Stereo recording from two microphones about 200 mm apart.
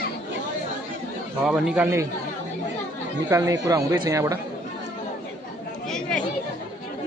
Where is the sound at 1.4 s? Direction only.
5° right (ahead or behind).